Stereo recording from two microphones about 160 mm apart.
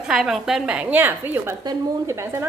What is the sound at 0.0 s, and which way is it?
A woman's voice, 5° right (ahead or behind).